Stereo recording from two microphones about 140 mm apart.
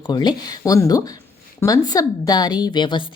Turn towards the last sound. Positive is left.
turn(degrees=35)  # may be behind; listen again after turning